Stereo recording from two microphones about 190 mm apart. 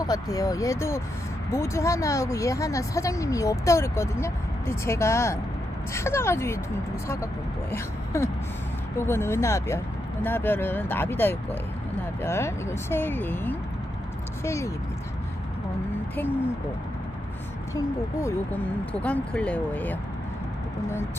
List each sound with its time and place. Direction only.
0.0 s speech: 20° left (ahead or behind)
7.7 s speech: 15° left (ahead or behind)
17.7 s speech: 15° left (ahead or behind)